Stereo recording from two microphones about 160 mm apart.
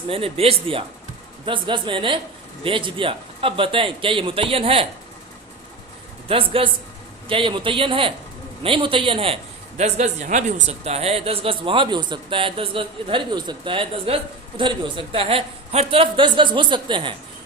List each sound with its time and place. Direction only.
0.1 s a man's voice: 35° right (ahead or behind)
6.2 s a man's voice: 35° right (ahead or behind)